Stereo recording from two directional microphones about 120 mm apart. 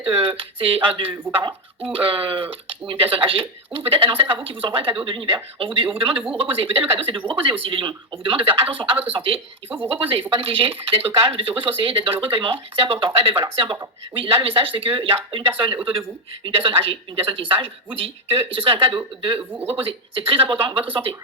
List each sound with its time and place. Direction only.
0.2 s speech: 50° right (ahead or behind)